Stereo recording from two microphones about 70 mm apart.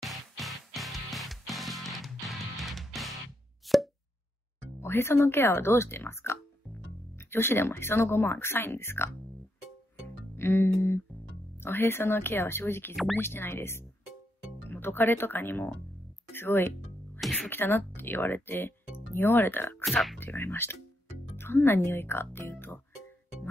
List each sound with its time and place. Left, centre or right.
0.0 s music: centre
3.6 s plop: centre
4.7 s speech: left
10.3 s speech: left
12.9 s speech: centre
13.2 s speech: left
16.3 s music: left
17.2 s music: centre
17.5 s speech: left
19.8 s speech: centre
20.2 s speech: left